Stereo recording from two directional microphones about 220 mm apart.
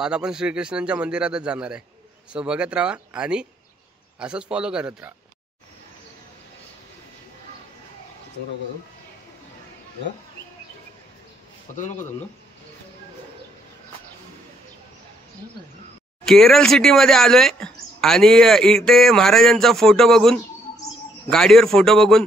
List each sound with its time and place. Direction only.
0.0 s speech: 5° right (ahead or behind)
11.7 s speech: 35° left (ahead or behind)
16.3 s speech: centre (ahead or behind)